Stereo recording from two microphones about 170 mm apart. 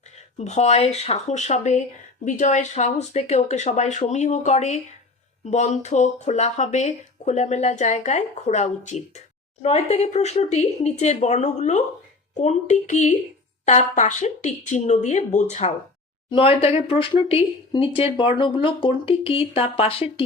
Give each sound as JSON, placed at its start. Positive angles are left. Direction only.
{"t": 0.3, "sound": "speech", "side_deg": 40}